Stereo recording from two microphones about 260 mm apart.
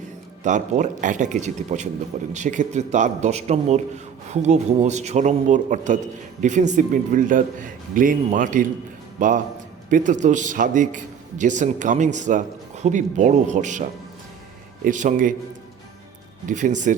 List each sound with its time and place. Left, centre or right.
0.4 s a man's voice: right
14.8 s a man's voice: right
16.5 s a man's voice: right